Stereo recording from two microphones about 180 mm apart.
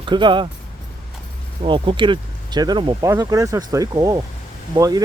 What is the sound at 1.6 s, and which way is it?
Speech, 25° right (ahead or behind).